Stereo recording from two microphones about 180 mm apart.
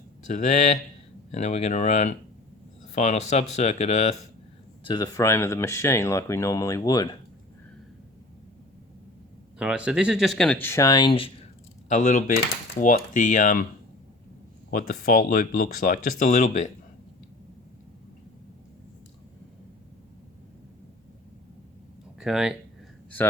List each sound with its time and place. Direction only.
0.3 s speech: 40° left (ahead or behind)
4.8 s speech: 25° left (ahead or behind)
9.6 s speech: 5° right (ahead or behind); by 11.3 s 30° left (ahead or behind)
11.9 s speech: 40° left (ahead or behind)
14.7 s speech: 55° left (ahead or behind)
22.2 s speech: 5° right (ahead or behind)